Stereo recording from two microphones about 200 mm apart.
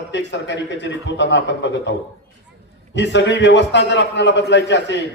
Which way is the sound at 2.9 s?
60° left (ahead or behind).